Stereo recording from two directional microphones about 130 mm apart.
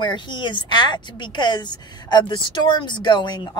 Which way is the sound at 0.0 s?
35° left (ahead or behind).